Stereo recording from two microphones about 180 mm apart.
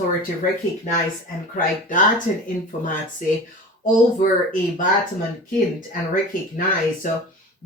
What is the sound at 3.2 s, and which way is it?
Speech, 45° left (ahead or behind).